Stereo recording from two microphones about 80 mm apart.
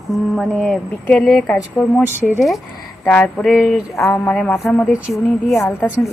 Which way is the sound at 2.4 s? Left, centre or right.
Centre.